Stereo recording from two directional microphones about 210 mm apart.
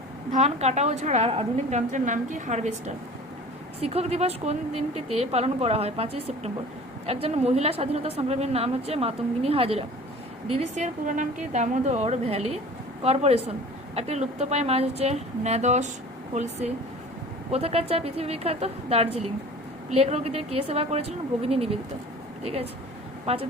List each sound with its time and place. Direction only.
0.3 s a woman's voice: 30° right (ahead or behind)